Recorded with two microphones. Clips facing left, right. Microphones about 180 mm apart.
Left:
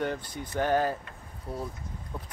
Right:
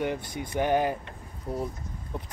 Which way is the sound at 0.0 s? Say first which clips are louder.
Right 2 dB; 15° right (ahead or behind).